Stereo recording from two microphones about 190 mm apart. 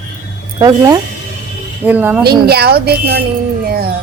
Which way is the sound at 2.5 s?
55° right (ahead or behind).